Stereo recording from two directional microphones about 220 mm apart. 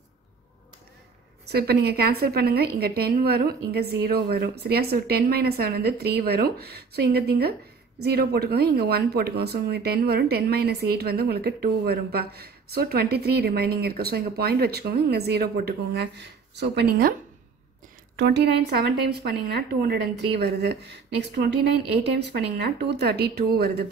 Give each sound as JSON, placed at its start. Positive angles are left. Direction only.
{"t": 1.5, "sound": "speech", "side_deg": -45}
{"t": 18.1, "sound": "speech", "side_deg": -50}